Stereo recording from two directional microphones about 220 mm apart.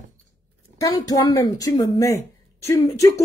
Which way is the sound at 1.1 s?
15° left (ahead or behind).